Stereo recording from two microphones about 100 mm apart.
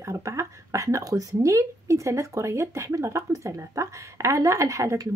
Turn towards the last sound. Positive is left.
turn(degrees=-30)  # may be behind; listen again after turning